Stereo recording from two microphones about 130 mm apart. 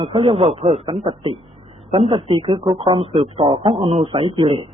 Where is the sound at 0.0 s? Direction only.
45° right (ahead or behind).